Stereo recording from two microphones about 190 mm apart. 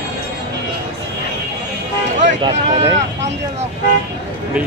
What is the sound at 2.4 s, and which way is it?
Speech, 20° right (ahead or behind).